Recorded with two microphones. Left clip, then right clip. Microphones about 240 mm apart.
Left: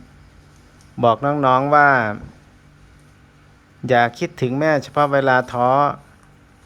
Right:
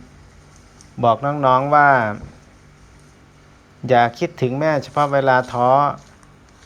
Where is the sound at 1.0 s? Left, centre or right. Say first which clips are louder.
Even; left.